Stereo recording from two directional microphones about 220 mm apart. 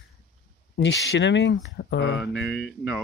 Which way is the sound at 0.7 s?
55° left (ahead or behind).